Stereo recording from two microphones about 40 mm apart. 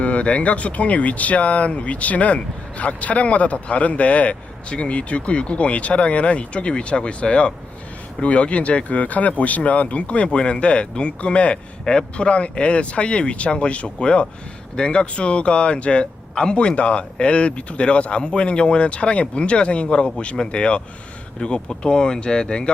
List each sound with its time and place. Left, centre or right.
0.0 s speech: left